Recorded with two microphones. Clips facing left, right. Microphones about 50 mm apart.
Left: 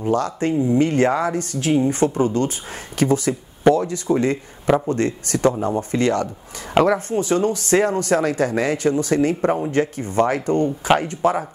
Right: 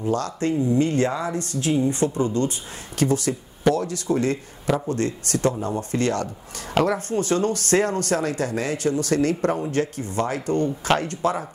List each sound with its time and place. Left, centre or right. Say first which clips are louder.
0.0 s speech: left 3 dB; left
1.5 s speech: left 2 dB; centre
1.9 s speech: left 4 dB; left